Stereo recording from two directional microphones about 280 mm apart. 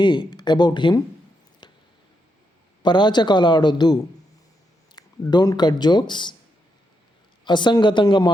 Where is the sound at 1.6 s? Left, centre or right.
Centre.